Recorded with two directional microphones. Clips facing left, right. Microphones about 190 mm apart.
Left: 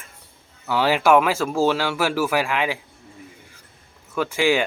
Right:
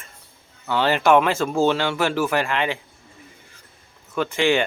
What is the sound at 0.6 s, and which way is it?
Speech, 10° left (ahead or behind).